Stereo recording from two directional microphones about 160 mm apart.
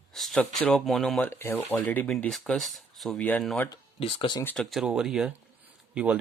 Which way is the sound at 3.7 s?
35° left (ahead or behind).